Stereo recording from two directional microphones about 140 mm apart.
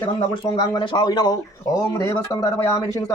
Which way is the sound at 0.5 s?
30° left (ahead or behind).